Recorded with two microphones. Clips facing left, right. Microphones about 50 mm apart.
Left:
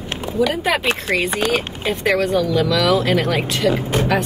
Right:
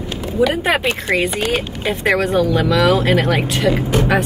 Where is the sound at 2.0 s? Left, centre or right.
Right.